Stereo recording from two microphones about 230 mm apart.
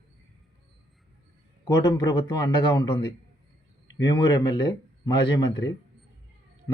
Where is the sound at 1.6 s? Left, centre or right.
Centre.